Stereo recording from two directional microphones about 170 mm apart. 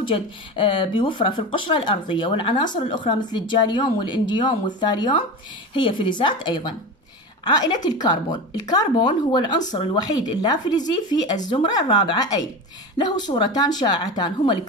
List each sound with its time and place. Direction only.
0.0 s speech: 30° left (ahead or behind)